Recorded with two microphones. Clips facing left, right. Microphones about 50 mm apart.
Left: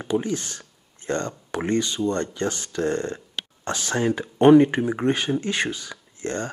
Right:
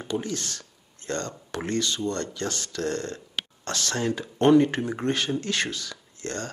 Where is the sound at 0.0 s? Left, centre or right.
Centre.